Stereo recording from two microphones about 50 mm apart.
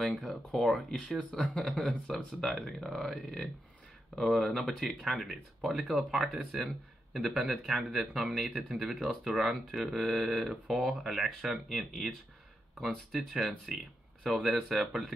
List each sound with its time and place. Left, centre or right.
0.0 s speech: left
0.3 s speech: centre
1.1 s speech: centre